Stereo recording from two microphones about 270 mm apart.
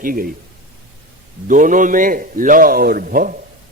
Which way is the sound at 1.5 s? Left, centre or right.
Right.